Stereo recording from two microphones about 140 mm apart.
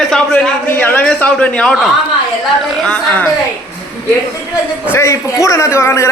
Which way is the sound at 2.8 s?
10° left (ahead or behind).